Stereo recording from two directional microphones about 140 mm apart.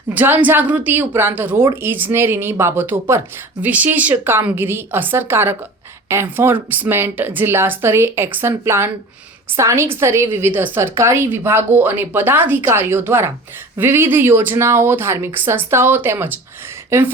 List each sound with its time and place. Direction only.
0.1 s a woman's voice: 10° right (ahead or behind)